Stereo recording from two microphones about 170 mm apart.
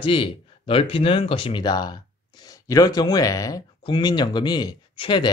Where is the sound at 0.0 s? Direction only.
30° left (ahead or behind).